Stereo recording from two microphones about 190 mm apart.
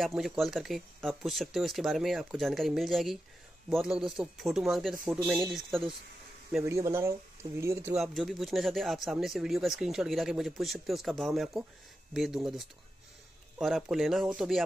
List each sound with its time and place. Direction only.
0.0 s speech: centre (ahead or behind)
6.6 s speech: 15° right (ahead or behind)
8.0 s speech: centre (ahead or behind)